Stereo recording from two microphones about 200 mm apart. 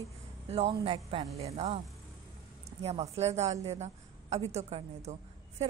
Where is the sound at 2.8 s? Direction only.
30° right (ahead or behind).